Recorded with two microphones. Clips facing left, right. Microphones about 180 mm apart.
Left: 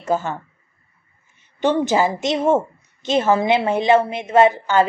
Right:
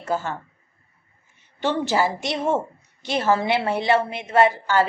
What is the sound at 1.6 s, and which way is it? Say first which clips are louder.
A woman's voice: left 4 dB; 20° left (ahead or behind).